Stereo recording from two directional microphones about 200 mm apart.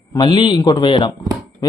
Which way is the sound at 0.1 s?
20° left (ahead or behind).